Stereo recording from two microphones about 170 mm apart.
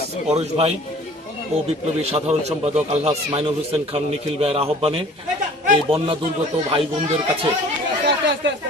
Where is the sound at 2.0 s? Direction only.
35° right (ahead or behind).